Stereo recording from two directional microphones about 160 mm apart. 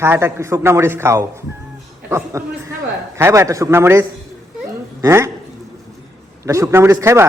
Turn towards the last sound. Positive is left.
turn(degrees=-15)  # may be behind; listen again after turning